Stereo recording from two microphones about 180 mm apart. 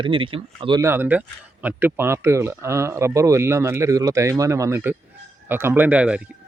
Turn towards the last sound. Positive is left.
turn(degrees=-5)  # may be behind; listen again after turning